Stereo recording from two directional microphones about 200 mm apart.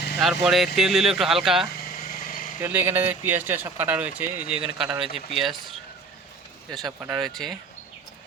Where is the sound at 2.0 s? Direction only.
45° left (ahead or behind).